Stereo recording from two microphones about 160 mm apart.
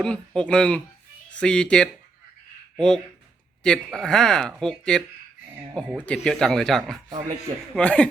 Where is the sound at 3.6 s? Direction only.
5° left (ahead or behind).